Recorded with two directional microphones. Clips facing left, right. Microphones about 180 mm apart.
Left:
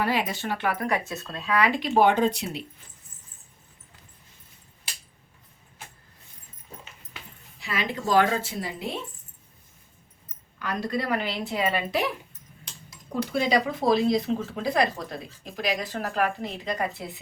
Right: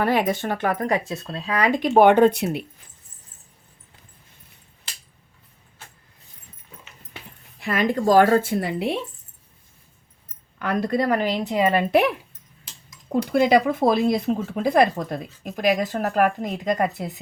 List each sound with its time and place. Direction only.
0.0 s speech: 50° right (ahead or behind)
7.6 s speech: 50° right (ahead or behind); by 9.0 s 65° right (ahead or behind)
10.6 s speech: 55° right (ahead or behind)
11.7 s speech: 55° right (ahead or behind)
13.3 s speech: 50° right (ahead or behind)